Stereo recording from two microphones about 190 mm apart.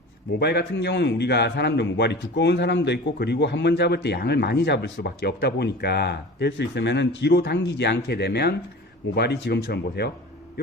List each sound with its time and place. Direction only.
0.3 s a man's voice: 60° left (ahead or behind)